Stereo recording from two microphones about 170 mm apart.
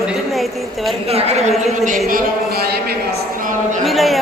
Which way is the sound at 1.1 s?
40° right (ahead or behind).